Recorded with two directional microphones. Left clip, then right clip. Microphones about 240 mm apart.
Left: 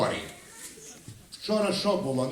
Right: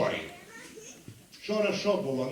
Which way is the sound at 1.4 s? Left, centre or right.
Left.